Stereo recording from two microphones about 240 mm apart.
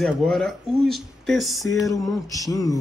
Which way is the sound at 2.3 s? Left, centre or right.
Centre.